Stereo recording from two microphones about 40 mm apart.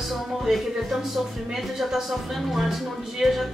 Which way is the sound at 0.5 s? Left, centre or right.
Centre.